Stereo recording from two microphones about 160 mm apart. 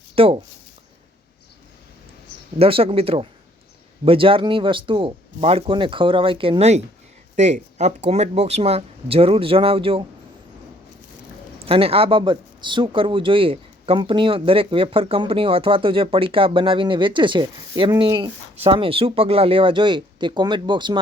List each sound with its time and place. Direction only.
0.2 s a sound: 35° right (ahead or behind)
2.6 s speech: 35° right (ahead or behind)
11.6 s speech: 35° right (ahead or behind)